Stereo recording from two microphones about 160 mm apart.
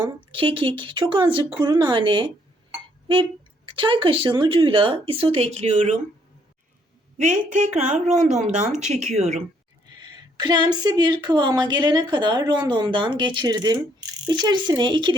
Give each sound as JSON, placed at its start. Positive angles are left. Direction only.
{"t": 0.0, "sound": "speech", "side_deg": -30}
{"t": 3.7, "sound": "speech", "side_deg": -30}
{"t": 7.2, "sound": "a woman's voice", "side_deg": -50}
{"t": 10.0, "sound": "speech", "side_deg": -25}